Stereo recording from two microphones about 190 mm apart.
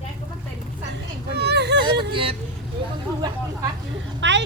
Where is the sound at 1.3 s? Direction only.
60° right (ahead or behind).